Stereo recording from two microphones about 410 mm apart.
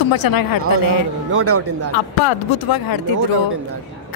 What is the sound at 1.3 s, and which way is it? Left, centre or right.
Speech, right.